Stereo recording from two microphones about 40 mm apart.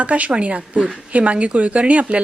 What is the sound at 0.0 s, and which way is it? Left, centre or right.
Speech, right.